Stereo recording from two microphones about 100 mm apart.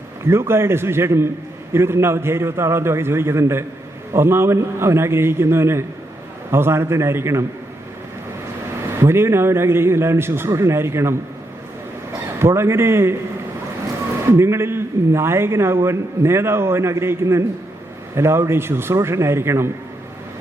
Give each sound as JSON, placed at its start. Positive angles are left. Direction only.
{"t": 0.3, "sound": "a man's voice", "side_deg": -25}
{"t": 9.0, "sound": "a man's voice", "side_deg": -25}
{"t": 12.4, "sound": "a man's voice", "side_deg": -25}
{"t": 14.3, "sound": "a man's voice", "side_deg": -25}